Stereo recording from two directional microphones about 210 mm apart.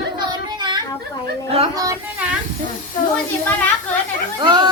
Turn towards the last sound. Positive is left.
turn(degrees=-20)  # may be behind; listen again after turning